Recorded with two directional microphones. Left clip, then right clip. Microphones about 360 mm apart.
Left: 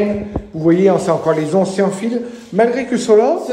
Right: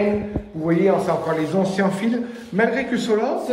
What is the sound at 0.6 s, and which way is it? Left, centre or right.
A man's voice, left.